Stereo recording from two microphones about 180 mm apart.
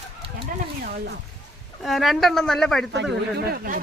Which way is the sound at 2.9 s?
70° right (ahead or behind).